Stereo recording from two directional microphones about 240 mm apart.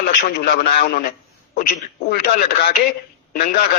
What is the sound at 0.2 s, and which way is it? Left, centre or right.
Speech, left.